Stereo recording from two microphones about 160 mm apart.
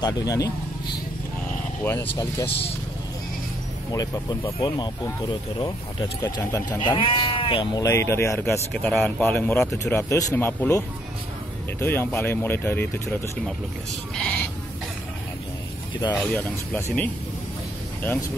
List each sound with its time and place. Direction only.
0.0 s speech: 20° left (ahead or behind)
1.9 s speech: 20° left (ahead or behind)
2.4 s speech: 90° left
3.9 s speech: 20° left (ahead or behind)
6.4 s speech: 15° left (ahead or behind)
6.8 s speech: 30° left (ahead or behind)
7.8 s speech: 15° left (ahead or behind)
8.7 s speech: 5° left (ahead or behind)
11.8 s speech: 15° left (ahead or behind)
14.1 s sheep: 5° left (ahead or behind)
16.2 s speech: 10° left (ahead or behind)